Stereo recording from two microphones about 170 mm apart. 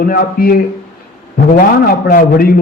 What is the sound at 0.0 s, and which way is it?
A man's voice, 60° left (ahead or behind).